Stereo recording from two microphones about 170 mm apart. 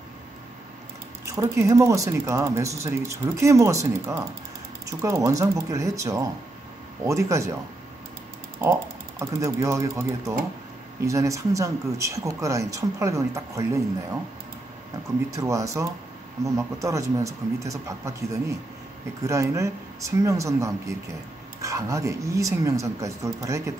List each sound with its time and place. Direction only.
1.2 s speech: 15° right (ahead or behind)
9.2 s speech: 15° right (ahead or behind)
15.3 s speech: 20° right (ahead or behind)